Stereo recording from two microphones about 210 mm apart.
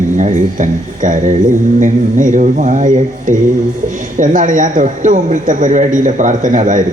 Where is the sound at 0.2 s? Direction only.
35° right (ahead or behind).